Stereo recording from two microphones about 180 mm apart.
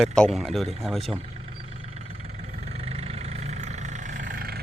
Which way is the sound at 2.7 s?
35° right (ahead or behind).